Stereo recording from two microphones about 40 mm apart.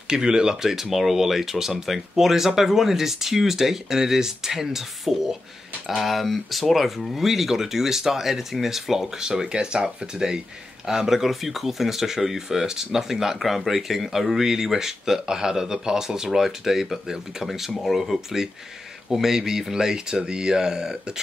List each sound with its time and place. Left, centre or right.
0.1 s speech: centre
0.7 s speech: centre
9.2 s speech: centre